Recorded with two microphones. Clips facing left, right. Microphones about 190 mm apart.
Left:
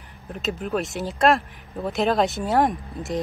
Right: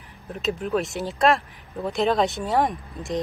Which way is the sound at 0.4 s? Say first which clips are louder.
Right 1 dB; centre (ahead or behind).